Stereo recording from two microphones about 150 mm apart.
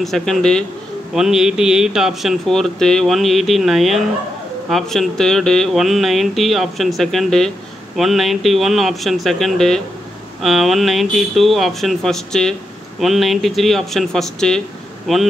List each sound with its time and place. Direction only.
0.0 s speech: centre (ahead or behind)